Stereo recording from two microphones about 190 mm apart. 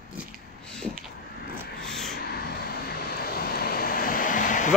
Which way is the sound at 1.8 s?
5° left (ahead or behind).